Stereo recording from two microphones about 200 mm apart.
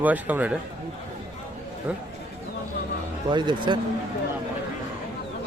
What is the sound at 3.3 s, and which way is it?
Speech, 25° right (ahead or behind).